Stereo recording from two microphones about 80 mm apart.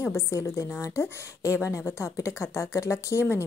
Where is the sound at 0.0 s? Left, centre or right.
Left.